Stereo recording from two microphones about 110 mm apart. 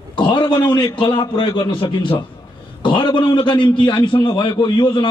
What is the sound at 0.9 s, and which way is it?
A man's voice, 50° left (ahead or behind).